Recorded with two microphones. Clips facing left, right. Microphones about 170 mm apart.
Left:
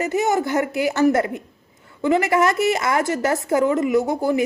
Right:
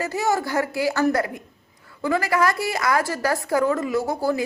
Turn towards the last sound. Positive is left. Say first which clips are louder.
# left 4 dB
turn(degrees=20)  # may be behind; listen again after turning